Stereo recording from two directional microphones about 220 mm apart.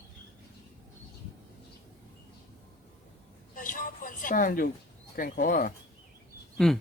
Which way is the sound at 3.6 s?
40° left (ahead or behind).